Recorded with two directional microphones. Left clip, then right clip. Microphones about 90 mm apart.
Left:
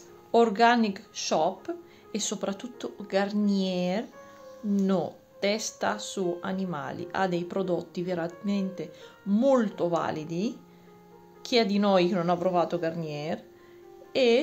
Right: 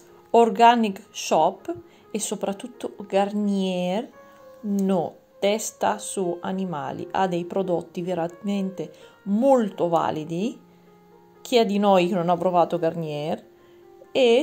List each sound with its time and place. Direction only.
0.3 s speech: 40° right (ahead or behind)
4.8 s speech: 25° right (ahead or behind)
5.4 s speech: 35° right (ahead or behind)
9.5 s speech: 40° right (ahead or behind)
11.4 s speech: 40° right (ahead or behind)
14.1 s speech: 40° right (ahead or behind)